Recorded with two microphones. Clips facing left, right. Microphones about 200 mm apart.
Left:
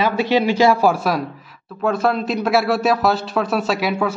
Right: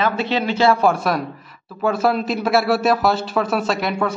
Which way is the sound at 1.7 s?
5° right (ahead or behind).